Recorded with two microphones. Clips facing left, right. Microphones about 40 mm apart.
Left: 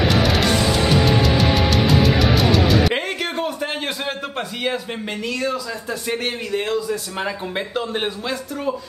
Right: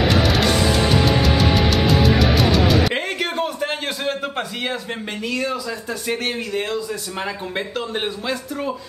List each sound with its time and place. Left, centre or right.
0.1 s music: centre
5.2 s a man's voice: centre